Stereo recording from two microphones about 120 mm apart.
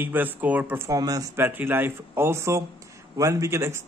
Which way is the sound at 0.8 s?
30° right (ahead or behind).